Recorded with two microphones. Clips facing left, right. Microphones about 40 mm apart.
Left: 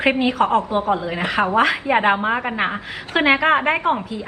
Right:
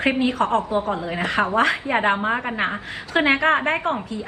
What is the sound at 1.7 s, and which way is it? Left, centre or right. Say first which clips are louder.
A woman's voice: left 3 dB; left.